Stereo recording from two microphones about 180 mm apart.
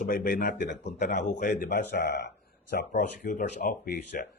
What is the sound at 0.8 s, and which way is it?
Speech, 40° left (ahead or behind).